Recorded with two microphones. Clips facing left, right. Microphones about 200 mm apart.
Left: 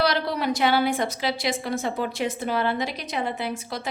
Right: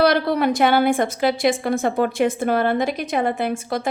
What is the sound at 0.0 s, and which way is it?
A woman's voice, 55° right (ahead or behind).